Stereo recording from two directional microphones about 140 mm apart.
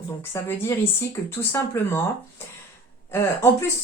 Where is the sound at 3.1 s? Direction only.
20° left (ahead or behind).